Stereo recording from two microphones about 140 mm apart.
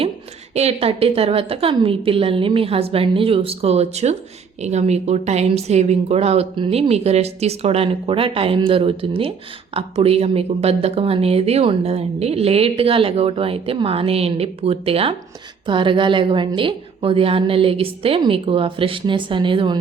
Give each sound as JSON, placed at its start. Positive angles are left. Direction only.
{"t": 0.5, "sound": "a woman's voice", "side_deg": -50}